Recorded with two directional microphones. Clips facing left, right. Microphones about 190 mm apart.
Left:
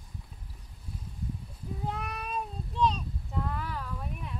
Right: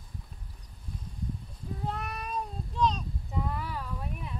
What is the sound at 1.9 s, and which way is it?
Cat, centre (ahead or behind).